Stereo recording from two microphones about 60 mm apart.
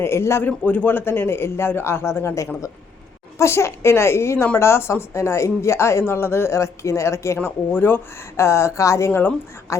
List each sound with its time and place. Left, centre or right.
0.0 s speech: left
0.4 s a man's voice: left
7.4 s a man's voice: left
8.4 s speech: left